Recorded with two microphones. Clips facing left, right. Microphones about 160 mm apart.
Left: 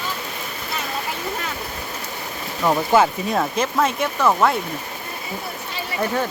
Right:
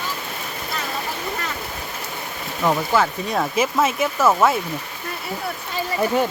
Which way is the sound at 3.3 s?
Centre (ahead or behind).